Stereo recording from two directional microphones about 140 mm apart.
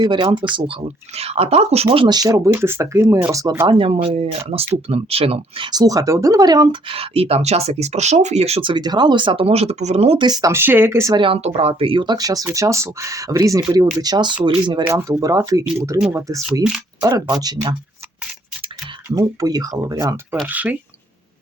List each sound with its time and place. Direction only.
0.0 s speech: 35° right (ahead or behind)
1.1 s speech: 45° right (ahead or behind); by 3.2 s 20° right (ahead or behind)
3.7 s speech: 40° right (ahead or behind)
8.7 s speech: 30° right (ahead or behind); by 10.2 s 50° right (ahead or behind)
10.2 s speech: 30° right (ahead or behind)
11.1 s speech: 40° right (ahead or behind)
14.8 s speech: 20° right (ahead or behind)
17.0 s speech: 25° right (ahead or behind)
19.0 s speech: 25° right (ahead or behind)
20.5 s speech: 10° right (ahead or behind)